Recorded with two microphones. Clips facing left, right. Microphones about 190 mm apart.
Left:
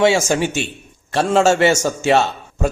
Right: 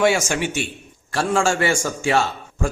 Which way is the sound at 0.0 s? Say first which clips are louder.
Left 4 dB; 30° left (ahead or behind).